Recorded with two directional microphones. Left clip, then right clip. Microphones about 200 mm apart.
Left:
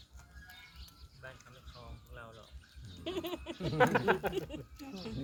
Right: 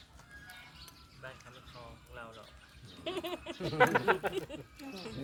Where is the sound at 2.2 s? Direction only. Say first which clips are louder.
Right 3 dB; centre (ahead or behind).